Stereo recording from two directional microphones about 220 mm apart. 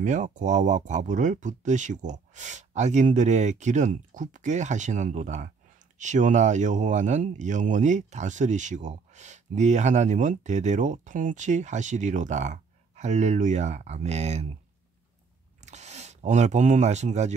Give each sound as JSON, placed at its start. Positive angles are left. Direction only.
{"t": 0.0, "sound": "speech", "side_deg": -35}
{"t": 15.6, "sound": "speech", "side_deg": -30}